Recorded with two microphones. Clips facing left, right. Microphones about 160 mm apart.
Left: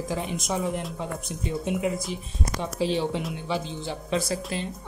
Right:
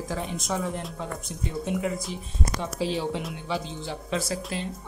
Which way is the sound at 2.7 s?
5° right (ahead or behind).